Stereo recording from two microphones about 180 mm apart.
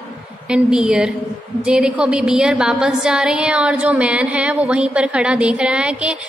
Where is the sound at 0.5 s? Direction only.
5° right (ahead or behind).